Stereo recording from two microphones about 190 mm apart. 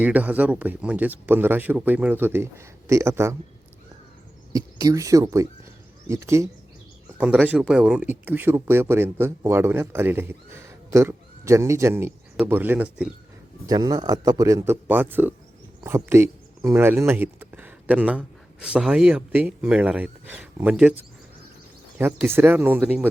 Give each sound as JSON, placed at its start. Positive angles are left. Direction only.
{"t": 0.0, "sound": "speech", "side_deg": -10}
{"t": 4.5, "sound": "speech", "side_deg": -20}
{"t": 13.7, "sound": "speech", "side_deg": -20}
{"t": 21.9, "sound": "speech", "side_deg": -10}